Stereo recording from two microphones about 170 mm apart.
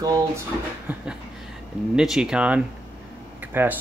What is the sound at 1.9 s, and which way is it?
Speech, 5° right (ahead or behind).